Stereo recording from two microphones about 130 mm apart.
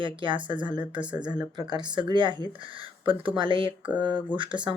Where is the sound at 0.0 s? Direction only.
40° right (ahead or behind).